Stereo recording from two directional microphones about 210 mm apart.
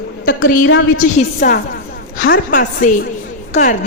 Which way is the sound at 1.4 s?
35° left (ahead or behind).